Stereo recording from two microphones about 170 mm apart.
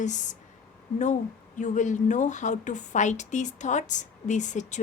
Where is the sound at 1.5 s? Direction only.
45° left (ahead or behind).